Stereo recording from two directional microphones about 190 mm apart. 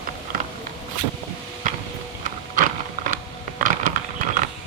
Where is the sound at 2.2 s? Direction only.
45° right (ahead or behind).